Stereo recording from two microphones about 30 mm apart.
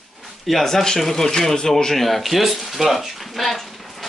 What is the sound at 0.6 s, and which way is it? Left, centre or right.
Speech, centre.